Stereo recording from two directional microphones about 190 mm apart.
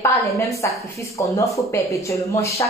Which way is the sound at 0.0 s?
15° left (ahead or behind).